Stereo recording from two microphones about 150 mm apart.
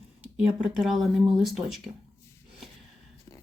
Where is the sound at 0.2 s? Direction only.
5° right (ahead or behind).